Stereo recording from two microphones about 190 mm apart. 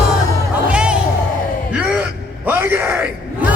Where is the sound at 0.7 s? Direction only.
5° right (ahead or behind).